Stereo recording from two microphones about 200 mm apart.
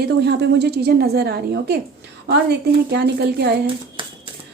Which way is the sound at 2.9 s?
55° right (ahead or behind).